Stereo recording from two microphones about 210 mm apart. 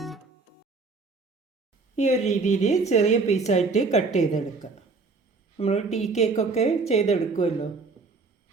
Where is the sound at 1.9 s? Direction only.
30° left (ahead or behind).